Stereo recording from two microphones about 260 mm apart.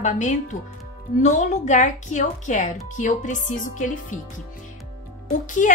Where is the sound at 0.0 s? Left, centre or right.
Left.